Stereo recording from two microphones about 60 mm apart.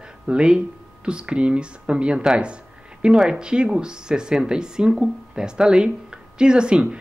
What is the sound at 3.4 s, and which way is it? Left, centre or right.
Speech, centre.